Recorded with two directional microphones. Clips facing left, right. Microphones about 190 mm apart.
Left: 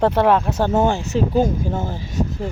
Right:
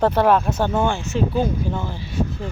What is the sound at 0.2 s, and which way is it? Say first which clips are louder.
Speech: left 1 dB; 25° left (ahead or behind).